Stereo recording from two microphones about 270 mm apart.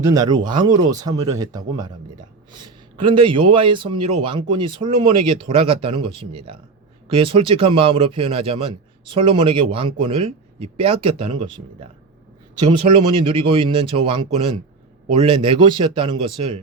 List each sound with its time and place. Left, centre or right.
0.0 s a man's voice: centre